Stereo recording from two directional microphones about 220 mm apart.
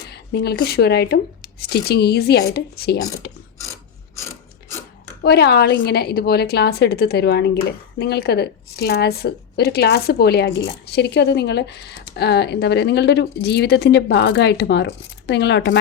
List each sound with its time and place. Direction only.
0.1 s a woman's voice: 45° left (ahead or behind)
3.6 s mechanisms: 15° left (ahead or behind)
5.2 s a woman's voice: 45° left (ahead or behind)